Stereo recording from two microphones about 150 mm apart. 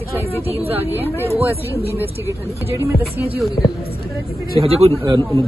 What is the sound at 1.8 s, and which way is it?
Speech, 40° right (ahead or behind).